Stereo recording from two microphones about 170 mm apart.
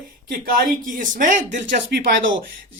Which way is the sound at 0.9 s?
50° right (ahead or behind).